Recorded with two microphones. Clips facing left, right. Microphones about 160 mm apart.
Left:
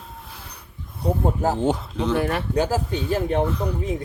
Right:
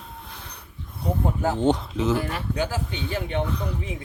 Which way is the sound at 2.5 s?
40° left (ahead or behind).